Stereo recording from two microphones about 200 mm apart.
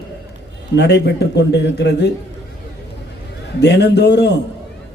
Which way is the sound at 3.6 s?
55° left (ahead or behind).